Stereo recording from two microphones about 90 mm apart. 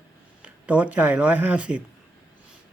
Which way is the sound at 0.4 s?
15° right (ahead or behind).